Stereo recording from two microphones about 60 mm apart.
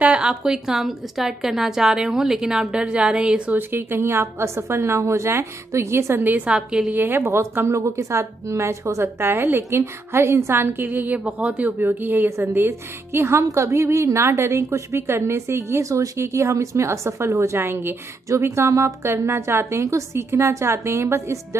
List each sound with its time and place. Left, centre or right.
0.0 s a woman's voice: centre
3.5 s a woman's voice: right
6.2 s speech: right
6.5 s a woman's voice: centre
6.9 s a woman's voice: right
7.6 s a woman's voice: right
9.2 s a woman's voice: right
9.6 s a woman's voice: right
11.8 s a woman's voice: right
12.3 s a woman's voice: right
16.2 s a woman's voice: right